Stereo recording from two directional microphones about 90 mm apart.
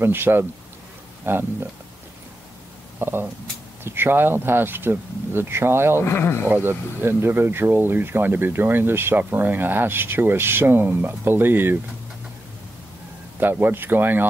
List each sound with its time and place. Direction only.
0.0 s speech: 25° right (ahead or behind)
3.0 s speech: 25° right (ahead or behind)
6.0 s speech: 25° left (ahead or behind)
6.5 s speech: 25° right (ahead or behind)
13.4 s speech: 20° right (ahead or behind)